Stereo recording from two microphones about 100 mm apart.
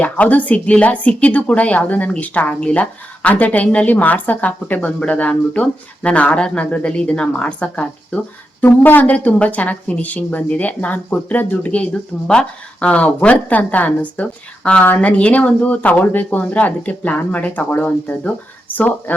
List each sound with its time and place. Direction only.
0.0 s a woman's voice: 15° left (ahead or behind)